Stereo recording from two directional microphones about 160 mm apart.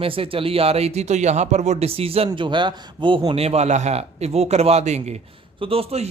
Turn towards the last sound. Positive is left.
turn(degrees=-40)  # may be behind; listen again after turning